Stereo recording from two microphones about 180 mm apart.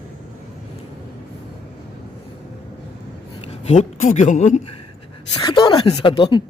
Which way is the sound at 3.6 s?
40° left (ahead or behind).